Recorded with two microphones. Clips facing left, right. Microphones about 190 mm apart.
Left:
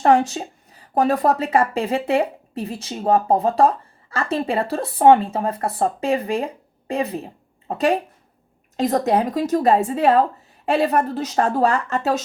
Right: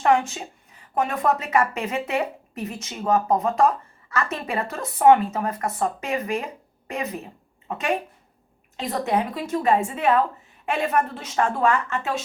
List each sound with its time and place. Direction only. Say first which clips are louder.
0.0 s speech: left 4 dB; 35° left (ahead or behind)